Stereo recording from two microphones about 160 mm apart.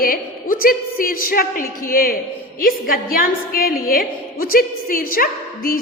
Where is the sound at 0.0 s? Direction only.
65° left (ahead or behind).